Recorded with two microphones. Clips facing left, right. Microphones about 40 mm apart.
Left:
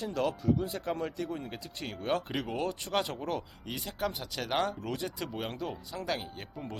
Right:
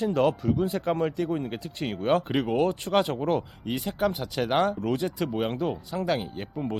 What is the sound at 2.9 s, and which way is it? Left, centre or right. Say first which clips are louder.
Speech: right 7 dB; right.